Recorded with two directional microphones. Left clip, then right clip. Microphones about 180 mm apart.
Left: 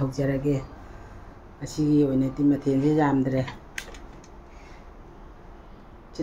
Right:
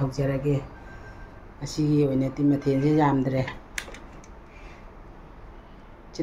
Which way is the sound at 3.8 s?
35° right (ahead or behind).